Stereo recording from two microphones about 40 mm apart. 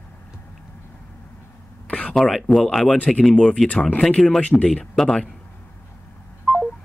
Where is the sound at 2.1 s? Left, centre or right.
Centre.